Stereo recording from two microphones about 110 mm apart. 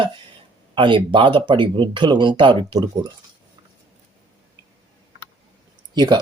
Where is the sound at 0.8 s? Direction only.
50° right (ahead or behind).